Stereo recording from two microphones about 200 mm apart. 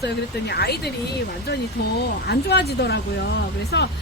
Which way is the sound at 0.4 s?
55° left (ahead or behind).